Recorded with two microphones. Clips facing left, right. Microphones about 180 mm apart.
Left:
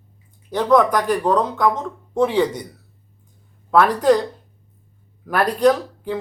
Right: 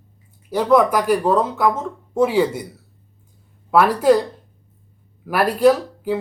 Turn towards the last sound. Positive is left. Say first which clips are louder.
# right 2 dB
turn(degrees=-5)  # may be behind; listen again after turning